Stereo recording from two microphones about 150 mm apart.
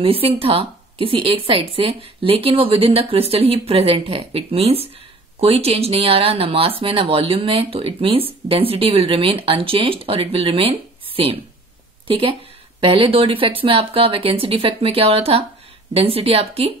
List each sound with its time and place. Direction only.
0.0 s speech: 40° right (ahead or behind)